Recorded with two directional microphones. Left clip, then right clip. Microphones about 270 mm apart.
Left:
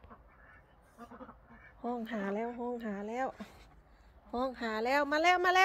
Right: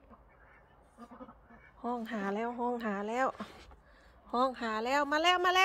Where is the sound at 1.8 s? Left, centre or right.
Centre.